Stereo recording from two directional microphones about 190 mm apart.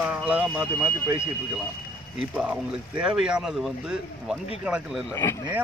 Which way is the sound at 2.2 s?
5° right (ahead or behind).